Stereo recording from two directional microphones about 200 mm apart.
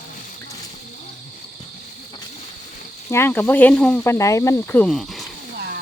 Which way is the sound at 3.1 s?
10° left (ahead or behind).